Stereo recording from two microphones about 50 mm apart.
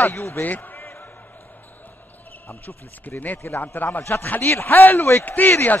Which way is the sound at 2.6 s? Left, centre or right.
Left.